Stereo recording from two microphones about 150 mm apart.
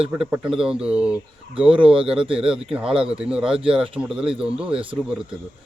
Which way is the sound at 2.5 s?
5° right (ahead or behind).